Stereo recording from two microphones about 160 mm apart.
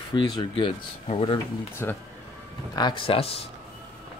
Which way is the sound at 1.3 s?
15° left (ahead or behind).